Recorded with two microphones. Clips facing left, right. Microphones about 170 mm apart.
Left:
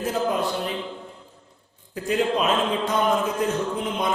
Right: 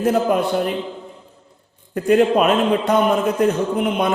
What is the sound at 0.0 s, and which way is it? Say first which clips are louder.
Speech: right 7 dB; 65° right (ahead or behind).